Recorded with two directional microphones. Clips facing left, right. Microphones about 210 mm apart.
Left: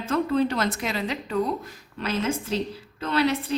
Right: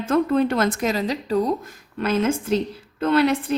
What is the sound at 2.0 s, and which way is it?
Speech, 50° right (ahead or behind).